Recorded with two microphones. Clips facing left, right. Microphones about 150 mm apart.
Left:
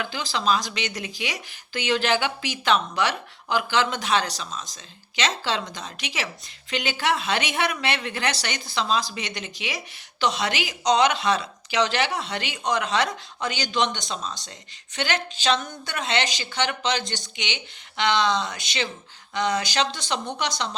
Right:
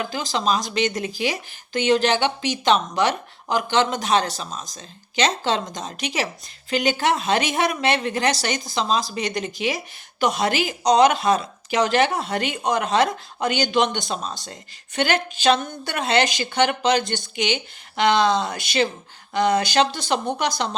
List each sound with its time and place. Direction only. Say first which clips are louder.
0.0 s a woman's voice: right 3 dB; 40° right (ahead or behind)
10.2 s a woman's voice: right 4 dB; 50° right (ahead or behind)